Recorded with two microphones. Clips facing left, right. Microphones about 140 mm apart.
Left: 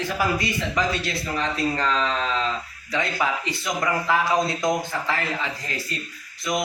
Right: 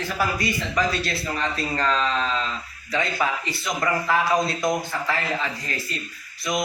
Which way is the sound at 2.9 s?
15° left (ahead or behind).